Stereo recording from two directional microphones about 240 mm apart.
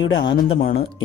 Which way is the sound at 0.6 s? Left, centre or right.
Left.